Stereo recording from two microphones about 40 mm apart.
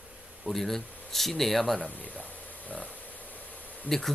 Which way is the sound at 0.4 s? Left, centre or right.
Centre.